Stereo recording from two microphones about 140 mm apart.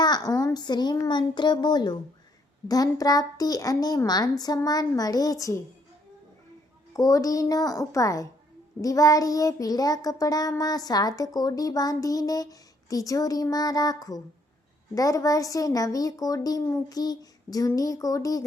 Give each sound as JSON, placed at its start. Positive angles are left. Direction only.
{"t": 0.0, "sound": "a child's voice", "side_deg": 30}
{"t": 6.9, "sound": "a woman's voice", "side_deg": 25}